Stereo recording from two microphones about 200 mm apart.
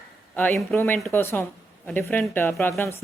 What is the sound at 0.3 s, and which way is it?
A woman's voice, 10° left (ahead or behind).